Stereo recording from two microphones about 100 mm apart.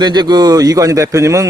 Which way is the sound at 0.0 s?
45° right (ahead or behind).